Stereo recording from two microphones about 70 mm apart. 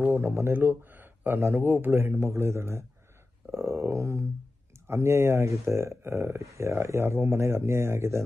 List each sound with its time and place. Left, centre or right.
0.1 s speech: right
3.5 s a sound: right
4.8 s speech: right